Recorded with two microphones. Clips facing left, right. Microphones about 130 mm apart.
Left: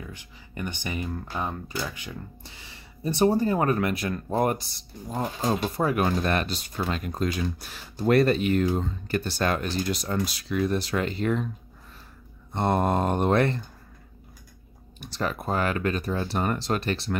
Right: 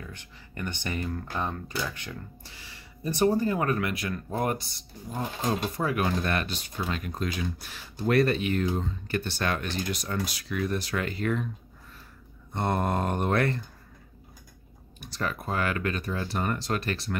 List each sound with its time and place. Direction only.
0.0 s speech: 10° left (ahead or behind)
2.4 s speech: 25° left (ahead or behind)
5.8 s speech: 30° left (ahead or behind)
12.5 s speech: 30° left (ahead or behind)
15.0 s speech: 30° left (ahead or behind)